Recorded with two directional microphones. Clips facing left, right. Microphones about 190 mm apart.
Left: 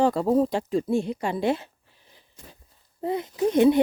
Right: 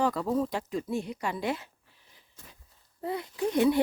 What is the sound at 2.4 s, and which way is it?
A child's voice, 15° left (ahead or behind).